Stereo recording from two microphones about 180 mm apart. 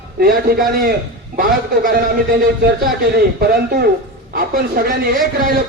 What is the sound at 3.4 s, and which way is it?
Speech, 60° right (ahead or behind).